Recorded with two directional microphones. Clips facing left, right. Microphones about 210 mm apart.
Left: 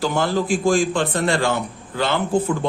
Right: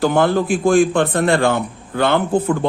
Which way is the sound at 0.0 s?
55° right (ahead or behind).